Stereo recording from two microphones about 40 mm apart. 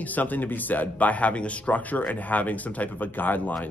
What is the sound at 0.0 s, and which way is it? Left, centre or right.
Speech, left.